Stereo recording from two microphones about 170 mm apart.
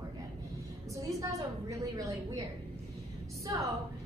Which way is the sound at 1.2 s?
20° right (ahead or behind).